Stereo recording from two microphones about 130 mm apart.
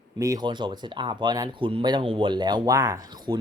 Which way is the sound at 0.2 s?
30° right (ahead or behind).